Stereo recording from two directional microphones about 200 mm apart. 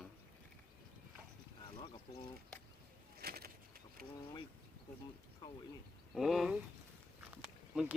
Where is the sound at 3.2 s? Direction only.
50° right (ahead or behind).